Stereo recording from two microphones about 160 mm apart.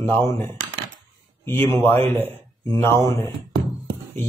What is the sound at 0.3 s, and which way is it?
A man's voice, 15° left (ahead or behind).